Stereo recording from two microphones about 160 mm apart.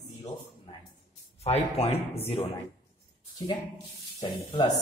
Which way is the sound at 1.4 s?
40° left (ahead or behind).